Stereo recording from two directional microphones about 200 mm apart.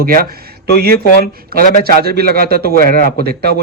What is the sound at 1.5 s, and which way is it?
Speech, 50° right (ahead or behind).